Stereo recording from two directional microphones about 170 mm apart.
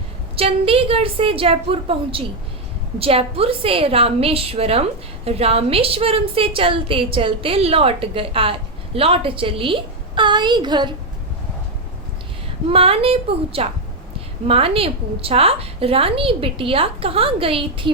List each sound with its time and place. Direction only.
0.3 s a woman's voice: 35° right (ahead or behind)
12.6 s a woman's voice: 35° right (ahead or behind)